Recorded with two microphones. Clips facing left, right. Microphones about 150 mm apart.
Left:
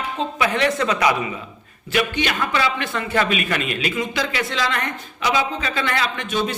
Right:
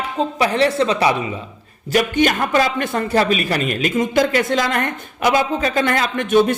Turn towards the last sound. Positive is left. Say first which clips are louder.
# right 9 dB
turn(degrees=-50)  # may be behind; listen again after turning